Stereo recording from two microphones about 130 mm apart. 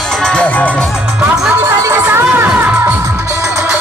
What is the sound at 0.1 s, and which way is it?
Music, 5° left (ahead or behind).